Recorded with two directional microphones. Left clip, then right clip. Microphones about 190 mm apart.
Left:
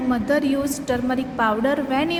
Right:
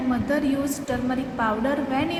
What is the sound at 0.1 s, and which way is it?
A woman's voice, 45° left (ahead or behind).